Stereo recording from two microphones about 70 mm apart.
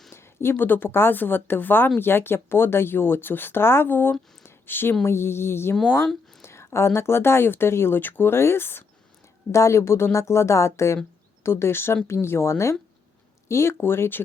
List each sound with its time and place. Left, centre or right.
0.1 s speech: left
4.4 s a sound: left
5.0 s speech: left
5.7 s speech: centre
6.4 s speech: left
9.5 s speech: left